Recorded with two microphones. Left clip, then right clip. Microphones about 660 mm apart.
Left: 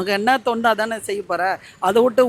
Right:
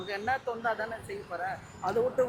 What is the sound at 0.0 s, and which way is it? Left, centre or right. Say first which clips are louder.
A man's voice: left 14 dB; left.